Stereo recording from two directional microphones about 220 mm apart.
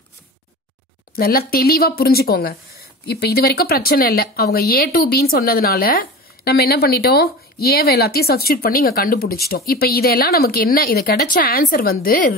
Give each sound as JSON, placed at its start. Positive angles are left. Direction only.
{"t": 1.1, "sound": "speech", "side_deg": 45}